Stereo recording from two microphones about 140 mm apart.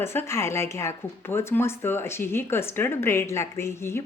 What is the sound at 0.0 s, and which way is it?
Speech, 15° left (ahead or behind).